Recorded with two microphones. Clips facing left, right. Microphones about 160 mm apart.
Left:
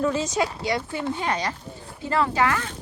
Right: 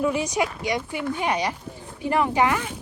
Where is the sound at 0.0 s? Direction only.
15° right (ahead or behind).